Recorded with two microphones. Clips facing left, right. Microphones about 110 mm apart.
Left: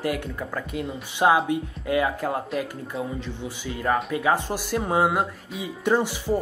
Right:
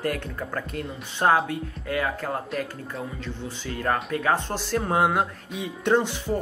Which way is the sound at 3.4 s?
10° left (ahead or behind).